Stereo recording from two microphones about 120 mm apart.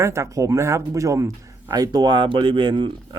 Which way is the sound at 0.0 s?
25° right (ahead or behind).